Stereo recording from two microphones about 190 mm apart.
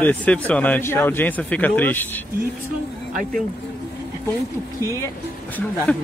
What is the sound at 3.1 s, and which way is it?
Speech, 50° right (ahead or behind).